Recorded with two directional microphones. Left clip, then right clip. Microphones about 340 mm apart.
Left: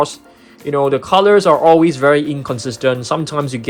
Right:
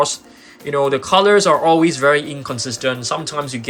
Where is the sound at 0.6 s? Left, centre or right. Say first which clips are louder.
Left 2 dB; centre.